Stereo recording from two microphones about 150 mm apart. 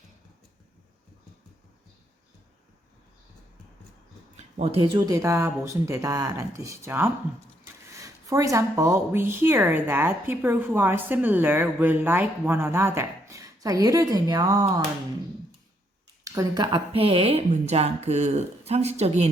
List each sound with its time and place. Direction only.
4.4 s a sound: 45° right (ahead or behind)
4.9 s speech: 20° right (ahead or behind)
16.2 s speech: 25° right (ahead or behind)
16.9 s speech: 40° right (ahead or behind)